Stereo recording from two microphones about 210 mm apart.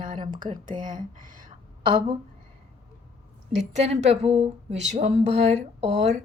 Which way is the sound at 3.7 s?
30° right (ahead or behind).